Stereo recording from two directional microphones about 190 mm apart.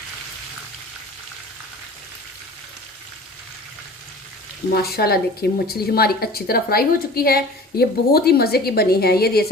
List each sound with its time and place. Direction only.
4.9 s a woman's voice: 55° left (ahead or behind)